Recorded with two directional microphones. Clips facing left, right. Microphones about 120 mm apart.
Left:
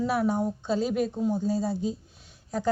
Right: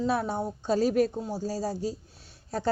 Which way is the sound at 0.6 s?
40° right (ahead or behind).